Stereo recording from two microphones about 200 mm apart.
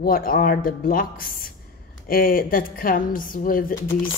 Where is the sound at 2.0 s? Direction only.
45° left (ahead or behind).